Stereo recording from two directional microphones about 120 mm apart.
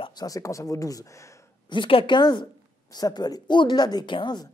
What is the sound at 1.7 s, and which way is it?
A woman's voice, 45° left (ahead or behind).